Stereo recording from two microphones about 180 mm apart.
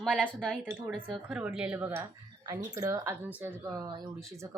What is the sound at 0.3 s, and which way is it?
Speech, 5° left (ahead or behind).